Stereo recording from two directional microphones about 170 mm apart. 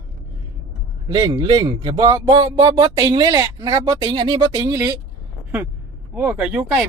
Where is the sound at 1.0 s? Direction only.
20° right (ahead or behind).